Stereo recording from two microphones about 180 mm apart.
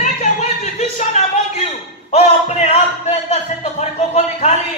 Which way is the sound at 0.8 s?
40° left (ahead or behind).